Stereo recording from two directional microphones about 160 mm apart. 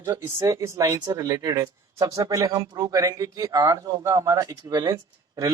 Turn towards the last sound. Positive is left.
turn(degrees=-20)  # may be behind; listen again after turning